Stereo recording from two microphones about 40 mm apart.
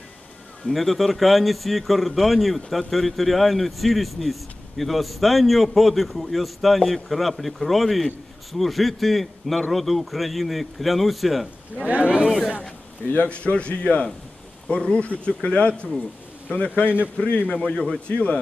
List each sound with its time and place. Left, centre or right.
0.7 s speech: centre
11.8 s speech: right
13.1 s a man's voice: left
17.6 s speech: centre
18.0 s a man's voice: left